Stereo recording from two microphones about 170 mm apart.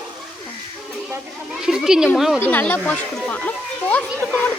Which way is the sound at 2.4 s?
10° left (ahead or behind).